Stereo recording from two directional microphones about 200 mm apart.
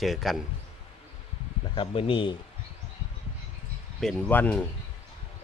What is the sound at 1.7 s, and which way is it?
Speech, 25° left (ahead or behind).